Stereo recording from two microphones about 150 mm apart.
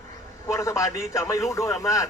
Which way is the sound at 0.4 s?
20° left (ahead or behind).